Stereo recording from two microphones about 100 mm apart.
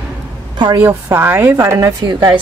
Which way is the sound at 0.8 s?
20° right (ahead or behind).